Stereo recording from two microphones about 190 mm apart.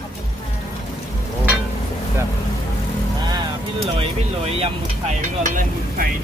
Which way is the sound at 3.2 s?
25° right (ahead or behind).